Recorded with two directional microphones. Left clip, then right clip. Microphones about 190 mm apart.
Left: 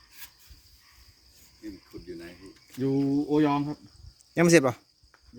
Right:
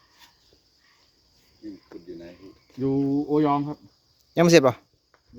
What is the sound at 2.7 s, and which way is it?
Speech, centre (ahead or behind).